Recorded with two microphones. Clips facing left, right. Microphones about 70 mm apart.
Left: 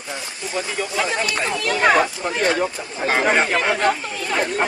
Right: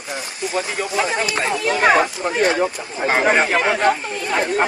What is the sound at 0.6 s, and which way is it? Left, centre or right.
Speech, right.